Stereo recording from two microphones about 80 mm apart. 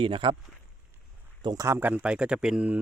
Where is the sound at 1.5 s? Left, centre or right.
Right.